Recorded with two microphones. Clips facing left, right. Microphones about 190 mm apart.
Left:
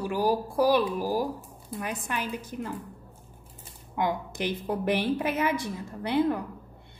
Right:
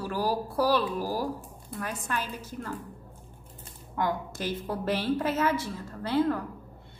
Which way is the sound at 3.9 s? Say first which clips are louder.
Left 1 dB; 15° left (ahead or behind).